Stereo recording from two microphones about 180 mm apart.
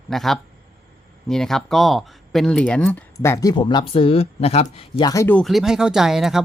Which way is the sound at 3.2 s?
20° left (ahead or behind).